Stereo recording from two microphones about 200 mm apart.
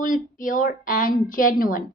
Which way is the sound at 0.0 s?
40° left (ahead or behind).